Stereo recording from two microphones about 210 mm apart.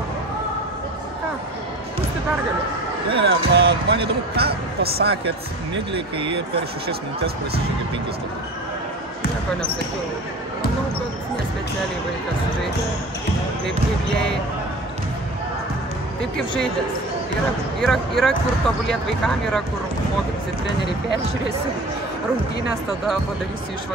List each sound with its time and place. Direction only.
3.3 s speech: 50° right (ahead or behind)
5.9 s speech: 25° right (ahead or behind)
16.2 s speech: centre (ahead or behind)
17.7 s speech: centre (ahead or behind)